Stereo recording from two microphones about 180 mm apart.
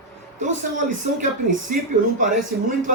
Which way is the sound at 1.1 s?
45° right (ahead or behind).